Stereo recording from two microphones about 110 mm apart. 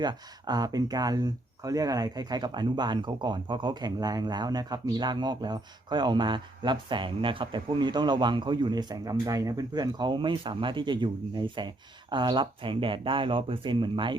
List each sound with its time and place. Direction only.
0.0 s speech: 40° right (ahead or behind)